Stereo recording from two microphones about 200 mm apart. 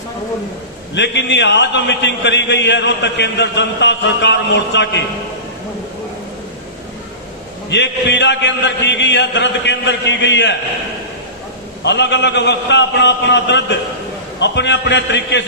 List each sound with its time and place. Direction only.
0.9 s a man's voice: 60° left (ahead or behind)
7.7 s a man's voice: 60° left (ahead or behind)
11.8 s a man's voice: 60° left (ahead or behind)